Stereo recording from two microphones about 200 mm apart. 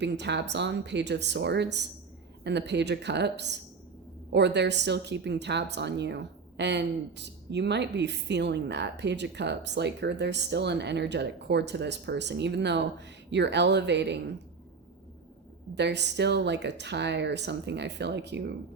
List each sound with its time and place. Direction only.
0.0 s a woman's voice: 60° right (ahead or behind)
15.7 s a woman's voice: 60° right (ahead or behind)